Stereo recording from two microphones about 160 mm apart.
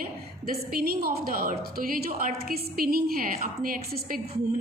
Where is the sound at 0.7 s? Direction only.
75° right (ahead or behind).